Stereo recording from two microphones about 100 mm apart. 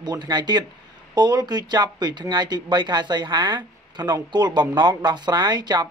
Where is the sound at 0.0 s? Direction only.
45° right (ahead or behind).